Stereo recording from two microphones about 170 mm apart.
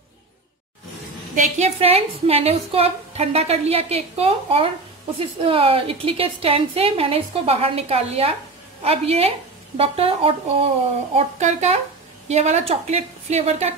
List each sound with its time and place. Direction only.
1.3 s a woman's voice: 40° right (ahead or behind)